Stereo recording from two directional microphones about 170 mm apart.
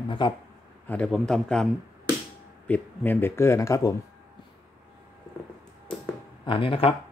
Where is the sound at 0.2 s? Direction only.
25° left (ahead or behind).